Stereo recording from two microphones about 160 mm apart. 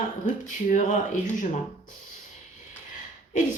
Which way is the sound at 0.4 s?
50° left (ahead or behind).